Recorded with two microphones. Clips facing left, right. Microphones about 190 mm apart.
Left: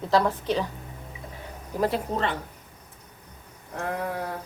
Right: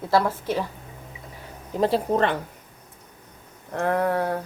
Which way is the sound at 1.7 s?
30° right (ahead or behind).